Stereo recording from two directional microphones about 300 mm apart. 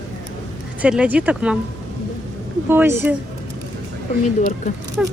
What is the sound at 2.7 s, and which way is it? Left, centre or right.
Speech, centre.